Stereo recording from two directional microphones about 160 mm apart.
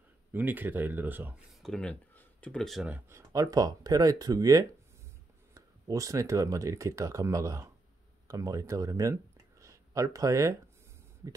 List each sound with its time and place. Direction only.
0.3 s speech: 10° right (ahead or behind)
1.5 s speech: centre (ahead or behind)
2.9 s speech: 15° right (ahead or behind)